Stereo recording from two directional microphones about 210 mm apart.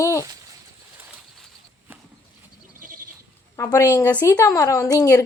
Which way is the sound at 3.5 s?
15° left (ahead or behind).